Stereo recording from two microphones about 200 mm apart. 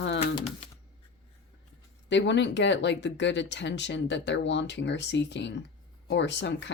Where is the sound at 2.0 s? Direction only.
60° left (ahead or behind).